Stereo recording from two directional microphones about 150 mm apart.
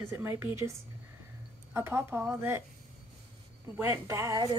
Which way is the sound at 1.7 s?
15° right (ahead or behind).